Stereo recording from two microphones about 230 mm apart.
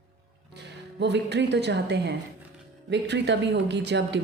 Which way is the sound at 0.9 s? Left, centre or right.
Right.